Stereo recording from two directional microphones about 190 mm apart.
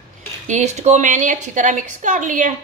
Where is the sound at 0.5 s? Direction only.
35° right (ahead or behind).